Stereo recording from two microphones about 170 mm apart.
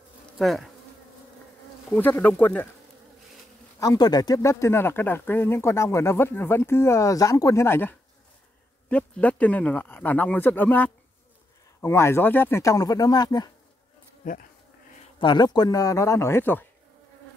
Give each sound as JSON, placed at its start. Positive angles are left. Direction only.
{"t": 0.4, "sound": "bee", "side_deg": 0}
{"t": 1.9, "sound": "speech", "side_deg": 10}
{"t": 3.8, "sound": "speech", "side_deg": 20}
{"t": 14.2, "sound": "bee", "side_deg": 55}
{"t": 15.1, "sound": "speech", "side_deg": 25}